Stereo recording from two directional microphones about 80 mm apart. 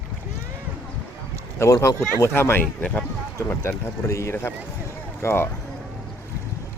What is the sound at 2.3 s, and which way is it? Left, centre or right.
Speech, left.